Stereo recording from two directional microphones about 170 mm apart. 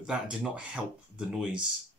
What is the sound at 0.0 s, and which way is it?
Speech, 5° right (ahead or behind).